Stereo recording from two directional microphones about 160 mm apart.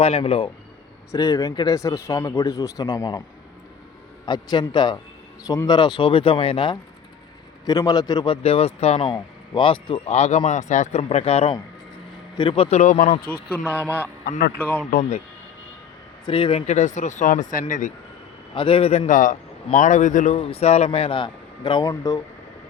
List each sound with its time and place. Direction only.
0.0 s a man's voice: 35° left (ahead or behind)
1.1 s speech: 20° left (ahead or behind)
4.3 s a man's voice: 25° left (ahead or behind)
7.7 s speech: 25° left (ahead or behind); by 9.0 s 40° left (ahead or behind)
9.0 s speech: 30° left (ahead or behind)
12.4 s speech: 30° left (ahead or behind)
12.7 s speech: 50° left (ahead or behind)
13.6 s speech: 10° right (ahead or behind)
14.3 s a man's voice: 90° left
14.8 s speech: 60° left (ahead or behind)
16.2 s speech: 30° left (ahead or behind); by 17.9 s 55° left (ahead or behind)
18.5 s a man's voice: 35° left (ahead or behind)